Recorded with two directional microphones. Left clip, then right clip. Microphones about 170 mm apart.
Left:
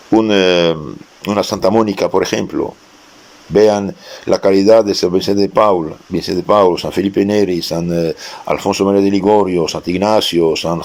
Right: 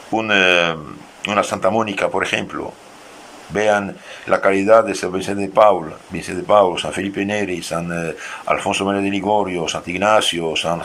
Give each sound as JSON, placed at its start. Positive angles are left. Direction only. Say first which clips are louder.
{"t": 0.1, "sound": "speech", "louder": "left 3 dB", "side_deg": 30}